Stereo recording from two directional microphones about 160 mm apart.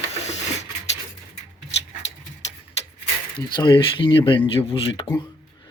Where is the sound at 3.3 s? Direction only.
30° left (ahead or behind).